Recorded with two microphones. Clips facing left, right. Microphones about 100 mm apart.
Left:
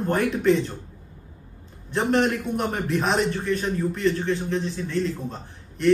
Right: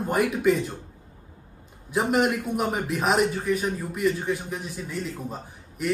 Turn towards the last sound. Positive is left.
turn(degrees=-10)  # may be behind; listen again after turning